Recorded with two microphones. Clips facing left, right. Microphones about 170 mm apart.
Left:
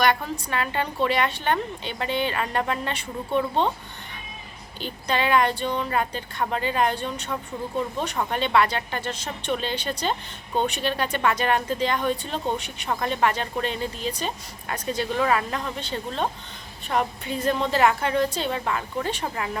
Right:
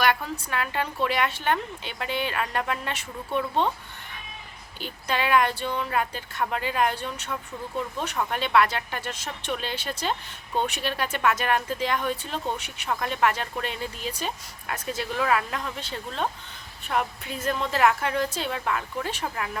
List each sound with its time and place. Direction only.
0.0 s speech: 5° right (ahead or behind)
4.8 s speech: 5° right (ahead or behind)